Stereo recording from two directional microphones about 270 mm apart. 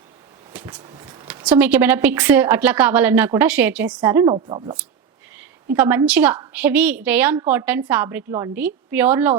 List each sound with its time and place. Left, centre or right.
0.5 s speech: centre